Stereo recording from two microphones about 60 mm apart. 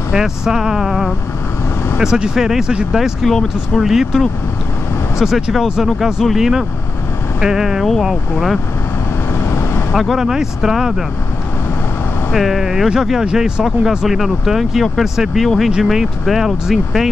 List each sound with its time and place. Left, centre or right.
0.1 s speech: centre
2.9 s speech: centre
5.2 s speech: centre
9.3 s vehicle: left
9.9 s speech: centre
12.3 s speech: centre